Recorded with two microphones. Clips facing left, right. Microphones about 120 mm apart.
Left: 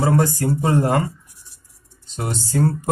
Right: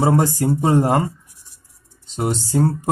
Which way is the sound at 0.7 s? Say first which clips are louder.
Right 2 dB; 20° right (ahead or behind).